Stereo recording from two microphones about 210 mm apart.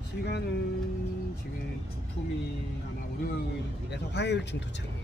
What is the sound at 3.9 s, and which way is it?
Speech, 55° left (ahead or behind).